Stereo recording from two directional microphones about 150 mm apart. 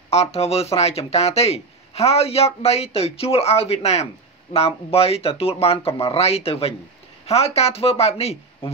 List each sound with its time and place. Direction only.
0.1 s speech: 45° left (ahead or behind)